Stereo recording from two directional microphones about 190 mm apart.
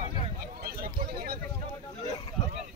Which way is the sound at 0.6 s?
55° right (ahead or behind).